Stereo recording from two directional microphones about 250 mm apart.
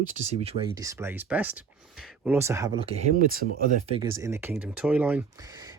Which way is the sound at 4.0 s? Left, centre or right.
Centre.